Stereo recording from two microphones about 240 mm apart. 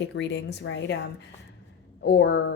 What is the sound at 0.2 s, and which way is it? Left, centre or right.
Speech, left.